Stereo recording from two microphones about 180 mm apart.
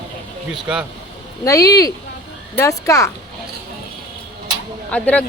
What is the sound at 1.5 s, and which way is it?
Speech, 20° left (ahead or behind).